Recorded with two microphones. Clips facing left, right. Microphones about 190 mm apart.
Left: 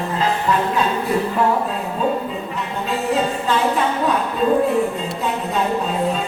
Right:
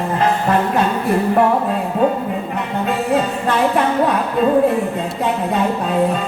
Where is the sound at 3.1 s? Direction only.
60° right (ahead or behind).